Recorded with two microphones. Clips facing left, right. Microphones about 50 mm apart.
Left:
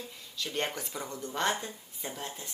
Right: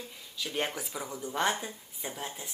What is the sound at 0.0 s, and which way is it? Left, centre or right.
Speech, centre.